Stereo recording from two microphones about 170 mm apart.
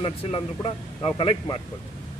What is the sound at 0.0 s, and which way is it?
A man's voice, 35° left (ahead or behind).